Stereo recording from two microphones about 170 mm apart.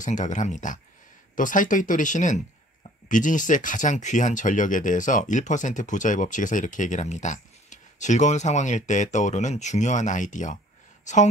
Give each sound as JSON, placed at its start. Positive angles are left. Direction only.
{"t": 0.0, "sound": "speech", "side_deg": 45}